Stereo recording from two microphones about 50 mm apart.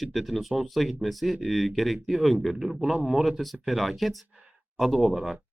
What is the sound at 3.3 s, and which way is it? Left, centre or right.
A man's voice, centre.